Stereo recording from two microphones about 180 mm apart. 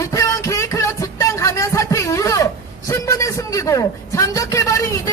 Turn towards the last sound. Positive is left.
turn(degrees=15)  # may be behind; listen again after turning